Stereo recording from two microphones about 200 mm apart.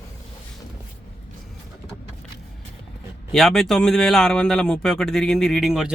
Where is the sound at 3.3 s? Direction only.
Centre (ahead or behind).